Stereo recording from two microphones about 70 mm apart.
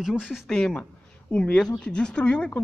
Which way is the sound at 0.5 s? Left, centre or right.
Centre.